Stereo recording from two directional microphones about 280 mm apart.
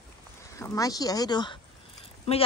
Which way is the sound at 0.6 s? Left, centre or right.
Centre.